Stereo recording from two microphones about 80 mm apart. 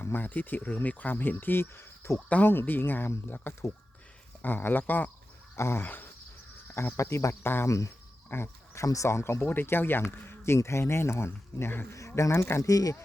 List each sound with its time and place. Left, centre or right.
0.0 s speech: left
6.7 s speech: left
7.4 s speech: left
7.7 s speech: left
11.9 s speech: left